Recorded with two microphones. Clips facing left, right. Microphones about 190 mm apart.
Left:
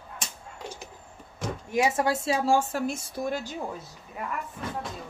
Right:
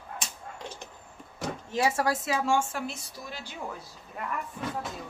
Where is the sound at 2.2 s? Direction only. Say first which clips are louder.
Left 3 dB; 35° left (ahead or behind).